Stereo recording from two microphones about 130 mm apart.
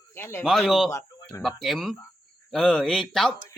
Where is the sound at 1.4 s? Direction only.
Centre (ahead or behind).